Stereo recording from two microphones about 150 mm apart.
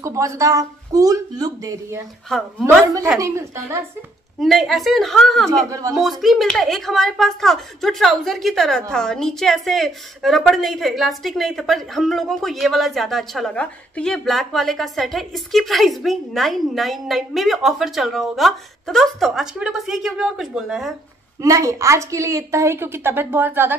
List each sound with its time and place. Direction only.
0.0 s a woman's voice: 20° right (ahead or behind)
3.2 s a woman's voice: 20° right (ahead or behind)
4.4 s a woman's voice: centre (ahead or behind)
5.7 s a woman's voice: 25° right (ahead or behind)
5.9 s a woman's voice: centre (ahead or behind)
21.4 s a woman's voice: 20° right (ahead or behind)